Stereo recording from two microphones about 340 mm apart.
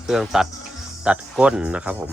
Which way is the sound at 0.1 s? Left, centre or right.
Centre.